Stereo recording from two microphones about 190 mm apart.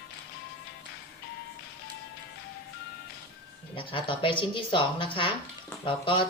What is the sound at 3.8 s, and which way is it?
Speech, 25° left (ahead or behind).